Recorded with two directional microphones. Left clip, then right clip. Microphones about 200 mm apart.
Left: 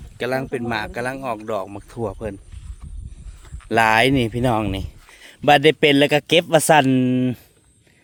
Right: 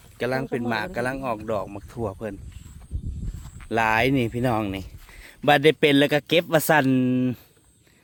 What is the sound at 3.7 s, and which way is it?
A man's voice, 25° left (ahead or behind).